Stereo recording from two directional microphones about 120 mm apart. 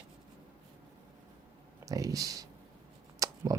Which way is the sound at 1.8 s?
30° right (ahead or behind).